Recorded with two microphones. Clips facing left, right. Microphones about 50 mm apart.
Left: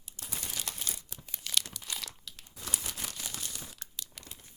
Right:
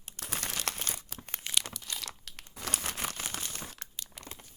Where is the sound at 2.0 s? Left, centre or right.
Right.